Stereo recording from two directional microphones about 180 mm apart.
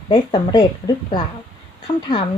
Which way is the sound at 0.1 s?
25° left (ahead or behind).